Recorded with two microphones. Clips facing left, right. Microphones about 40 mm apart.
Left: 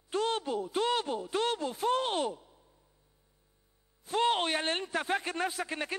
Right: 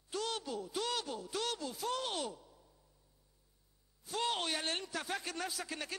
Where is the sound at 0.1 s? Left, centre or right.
Left.